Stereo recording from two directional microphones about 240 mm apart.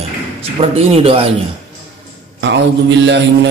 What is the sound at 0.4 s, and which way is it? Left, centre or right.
Speech, right.